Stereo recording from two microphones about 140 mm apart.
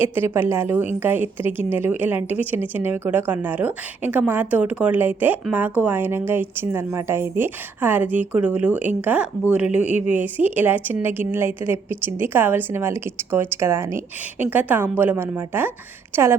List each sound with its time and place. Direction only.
0.0 s a woman's voice: 15° right (ahead or behind)